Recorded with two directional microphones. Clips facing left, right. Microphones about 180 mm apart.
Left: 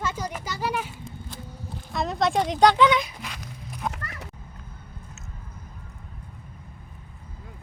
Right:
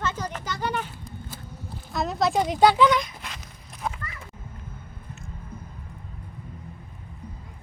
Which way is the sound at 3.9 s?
70° left (ahead or behind).